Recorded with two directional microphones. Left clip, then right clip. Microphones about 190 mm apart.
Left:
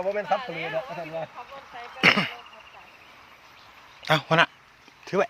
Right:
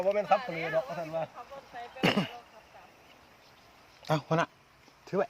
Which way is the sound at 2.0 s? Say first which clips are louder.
Left 9 dB; 20° right (ahead or behind).